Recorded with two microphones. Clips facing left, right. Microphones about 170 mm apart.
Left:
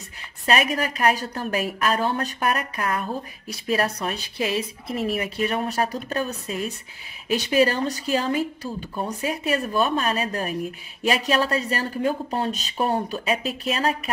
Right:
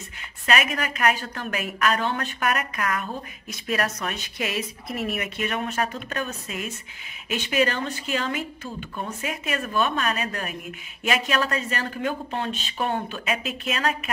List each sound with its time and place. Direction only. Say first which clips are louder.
0.5 s a woman's voice: left 2 dB; 35° left (ahead or behind)